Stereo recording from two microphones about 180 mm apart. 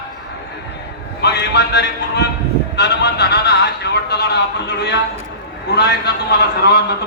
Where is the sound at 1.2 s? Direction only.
70° left (ahead or behind).